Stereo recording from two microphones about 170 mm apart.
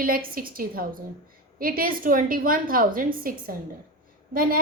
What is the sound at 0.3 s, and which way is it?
A woman's voice, 60° right (ahead or behind).